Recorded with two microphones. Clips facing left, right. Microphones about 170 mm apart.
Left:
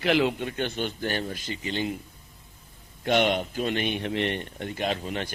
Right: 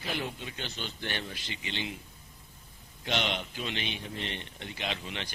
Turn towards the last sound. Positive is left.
turn(degrees=45)  # may be behind; listen again after turning